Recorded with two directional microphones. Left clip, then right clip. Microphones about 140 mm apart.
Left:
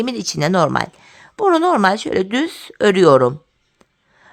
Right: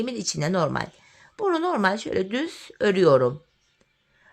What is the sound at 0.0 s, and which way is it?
A woman's voice, 40° left (ahead or behind).